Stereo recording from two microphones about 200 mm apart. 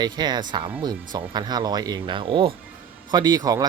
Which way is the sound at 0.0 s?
20° right (ahead or behind).